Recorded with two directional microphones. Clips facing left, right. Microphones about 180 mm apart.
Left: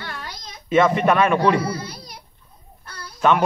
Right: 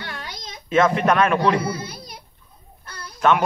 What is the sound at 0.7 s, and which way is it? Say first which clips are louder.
Speech: left 1 dB; 5° left (ahead or behind).